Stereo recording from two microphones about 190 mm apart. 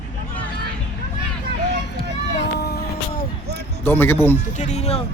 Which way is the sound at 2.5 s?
55° left (ahead or behind).